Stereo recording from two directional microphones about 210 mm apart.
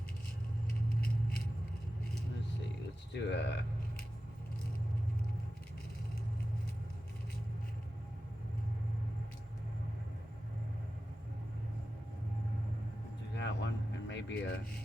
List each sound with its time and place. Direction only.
3.1 s a sound: 55° left (ahead or behind)
13.3 s vehicle: 55° left (ahead or behind)
14.1 s speech: 55° left (ahead or behind)